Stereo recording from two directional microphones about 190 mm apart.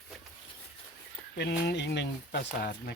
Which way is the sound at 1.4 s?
60° left (ahead or behind).